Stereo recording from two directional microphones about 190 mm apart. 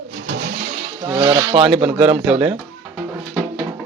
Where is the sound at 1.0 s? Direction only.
20° right (ahead or behind).